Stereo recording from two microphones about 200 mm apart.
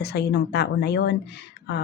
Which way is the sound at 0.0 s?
55° left (ahead or behind).